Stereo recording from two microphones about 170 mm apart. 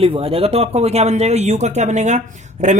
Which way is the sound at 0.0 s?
35° right (ahead or behind).